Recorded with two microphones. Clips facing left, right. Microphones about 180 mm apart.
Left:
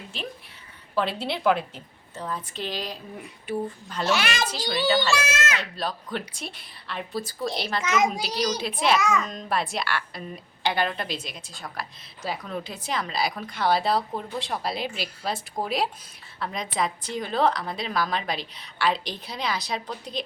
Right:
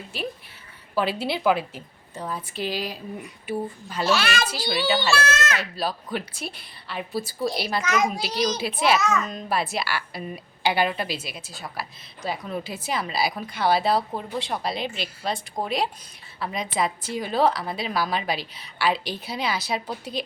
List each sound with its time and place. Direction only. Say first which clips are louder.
0.9 s a woman's voice: right 2 dB; 5° right (ahead or behind)
4.1 s a child's voice: right 2 dB; 15° left (ahead or behind)
4.4 s a woman's voice: right 1 dB; 10° right (ahead or behind)
5.1 s a child's voice: right 2 dB; 10° left (ahead or behind)
5.5 s a woman's voice: right 2 dB; 5° right (ahead or behind)
7.9 s a child's voice: left 1 dB; 20° left (ahead or behind)
8.5 s a woman's voice: right 1 dB; 5° right (ahead or behind)
9.0 s a child's voice: even; 10° left (ahead or behind)
9.2 s a woman's voice: right 1 dB; 5° right (ahead or behind)